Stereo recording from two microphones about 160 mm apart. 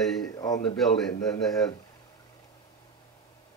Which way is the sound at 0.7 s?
Centre (ahead or behind).